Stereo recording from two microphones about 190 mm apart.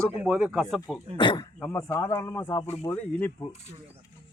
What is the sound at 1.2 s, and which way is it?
Speech, 25° left (ahead or behind).